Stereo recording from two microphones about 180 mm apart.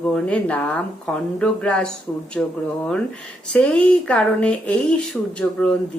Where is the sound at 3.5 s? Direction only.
5° left (ahead or behind).